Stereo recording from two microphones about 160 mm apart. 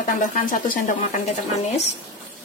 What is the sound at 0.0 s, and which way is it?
Speech, 55° left (ahead or behind).